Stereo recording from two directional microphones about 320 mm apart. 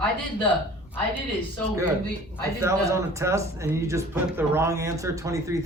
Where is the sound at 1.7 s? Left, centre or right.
Centre.